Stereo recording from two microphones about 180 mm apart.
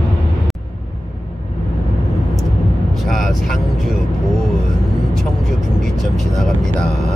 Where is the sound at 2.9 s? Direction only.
Centre (ahead or behind).